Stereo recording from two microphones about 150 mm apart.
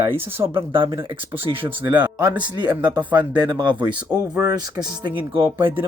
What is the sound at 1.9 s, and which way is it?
Speech, 10° right (ahead or behind).